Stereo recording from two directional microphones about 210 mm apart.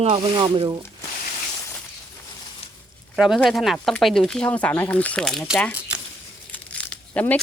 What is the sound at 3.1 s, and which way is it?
Speech, centre (ahead or behind).